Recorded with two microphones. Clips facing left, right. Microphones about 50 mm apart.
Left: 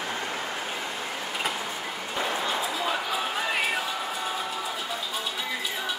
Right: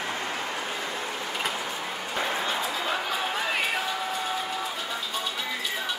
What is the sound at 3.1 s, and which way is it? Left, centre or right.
Music, centre.